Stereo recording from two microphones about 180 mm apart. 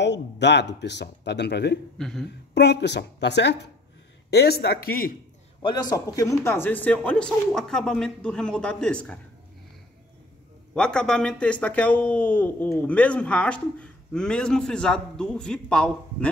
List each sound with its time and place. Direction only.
0.0 s speech: 75° left (ahead or behind)
2.0 s speech: centre (ahead or behind)
2.5 s speech: 70° left (ahead or behind); by 5.1 s 55° left (ahead or behind)
5.6 s speech: 25° left (ahead or behind); by 9.2 s 5° left (ahead or behind)
10.7 s speech: 5° left (ahead or behind)